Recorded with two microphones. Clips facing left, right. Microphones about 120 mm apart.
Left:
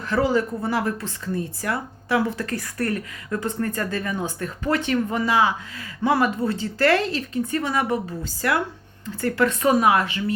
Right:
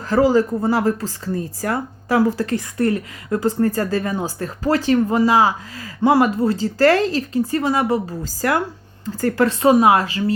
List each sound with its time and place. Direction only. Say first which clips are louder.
0.0 s speech: right 6 dB; 35° right (ahead or behind)
2.8 s speech: right 7 dB; 20° right (ahead or behind)
3.2 s speech: right 8 dB; 35° right (ahead or behind)